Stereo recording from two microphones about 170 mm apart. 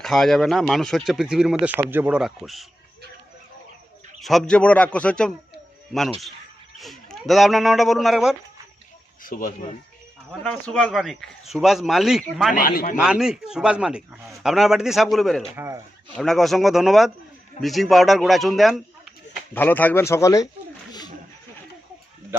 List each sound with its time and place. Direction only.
0.0 s speech: centre (ahead or behind)
4.2 s speech: centre (ahead or behind)
9.2 s speech: 50° left (ahead or behind)
10.4 s speech: 5° left (ahead or behind)
12.5 s speech: 55° left (ahead or behind)
13.0 s speech: 5° right (ahead or behind)
15.5 s speech: 15° right (ahead or behind)
16.1 s speech: centre (ahead or behind)
19.5 s speech: 10° left (ahead or behind)